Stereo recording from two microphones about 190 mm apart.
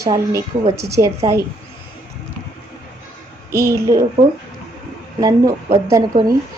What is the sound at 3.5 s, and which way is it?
Speech, 15° right (ahead or behind).